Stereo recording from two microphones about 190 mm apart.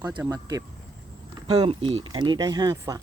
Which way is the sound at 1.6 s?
30° right (ahead or behind).